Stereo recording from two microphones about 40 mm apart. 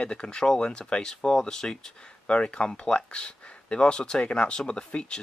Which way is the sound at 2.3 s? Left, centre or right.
Left.